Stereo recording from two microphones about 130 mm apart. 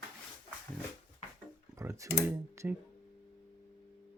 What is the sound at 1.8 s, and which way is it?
Speech, 25° right (ahead or behind).